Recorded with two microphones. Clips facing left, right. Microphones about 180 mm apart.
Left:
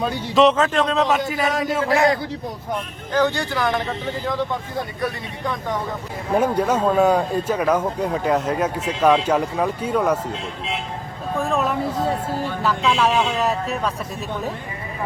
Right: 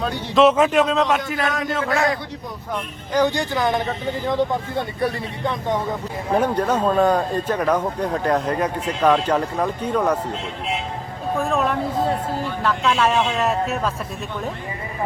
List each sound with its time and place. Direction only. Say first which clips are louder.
0.0 s speech: even; centre (ahead or behind)
0.5 s speech: right 2 dB; 10° right (ahead or behind); by 1.8 s 5° left (ahead or behind)
3.1 s speech: right 1 dB; 15° right (ahead or behind)
6.3 s speech: left 1 dB; 10° left (ahead or behind)
11.3 s speech: even; centre (ahead or behind)